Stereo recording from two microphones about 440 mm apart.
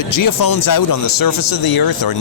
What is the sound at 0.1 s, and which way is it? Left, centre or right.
Speech, left.